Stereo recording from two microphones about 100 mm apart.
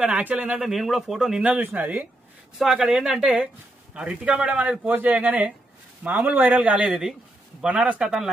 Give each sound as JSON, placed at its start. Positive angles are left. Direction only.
{"t": 0.0, "sound": "a man's voice", "side_deg": -10}
{"t": 1.5, "sound": "a man's voice", "side_deg": -20}
{"t": 2.6, "sound": "a man's voice", "side_deg": -5}